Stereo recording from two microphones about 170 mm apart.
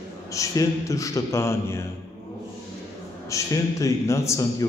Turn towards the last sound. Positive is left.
turn(degrees=20)  # may be behind; listen again after turning